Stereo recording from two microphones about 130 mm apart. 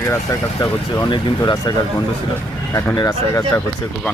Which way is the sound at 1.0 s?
35° left (ahead or behind).